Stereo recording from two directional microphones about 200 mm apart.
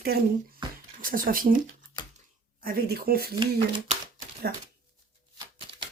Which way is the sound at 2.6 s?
50° right (ahead or behind).